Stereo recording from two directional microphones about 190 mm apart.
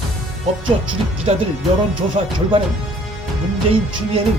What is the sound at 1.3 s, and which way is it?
Speech, 30° right (ahead or behind).